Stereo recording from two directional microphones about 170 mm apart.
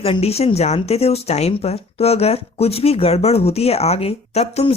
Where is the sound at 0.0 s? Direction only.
35° left (ahead or behind).